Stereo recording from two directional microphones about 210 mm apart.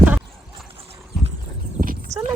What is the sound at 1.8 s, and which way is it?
Horse, 40° right (ahead or behind).